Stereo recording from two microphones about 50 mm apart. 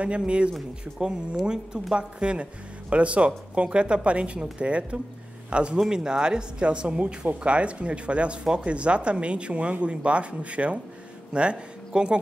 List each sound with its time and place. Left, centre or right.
0.0 s speech: right